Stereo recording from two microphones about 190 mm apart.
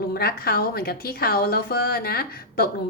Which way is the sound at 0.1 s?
55° left (ahead or behind).